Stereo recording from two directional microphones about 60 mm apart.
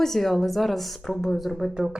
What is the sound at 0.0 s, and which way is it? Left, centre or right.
Speech, centre.